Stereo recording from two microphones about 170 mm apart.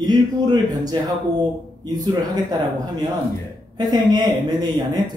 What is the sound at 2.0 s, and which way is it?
Speech, 25° right (ahead or behind).